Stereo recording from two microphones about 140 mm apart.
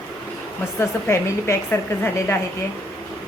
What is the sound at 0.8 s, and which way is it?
Speech, 20° left (ahead or behind).